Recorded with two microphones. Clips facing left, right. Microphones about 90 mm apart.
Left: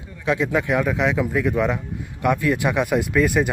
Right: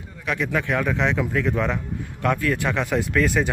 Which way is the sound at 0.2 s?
20° left (ahead or behind).